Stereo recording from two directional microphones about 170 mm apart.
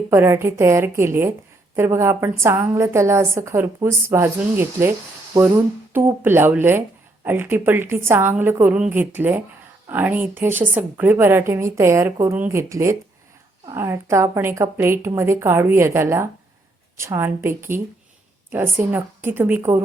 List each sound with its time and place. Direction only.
0.1 s a woman's voice: 15° right (ahead or behind)
5.9 s a woman's voice: 15° right (ahead or behind)